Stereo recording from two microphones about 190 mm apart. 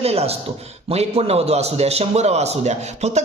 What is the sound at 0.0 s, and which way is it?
A man's voice, 30° right (ahead or behind).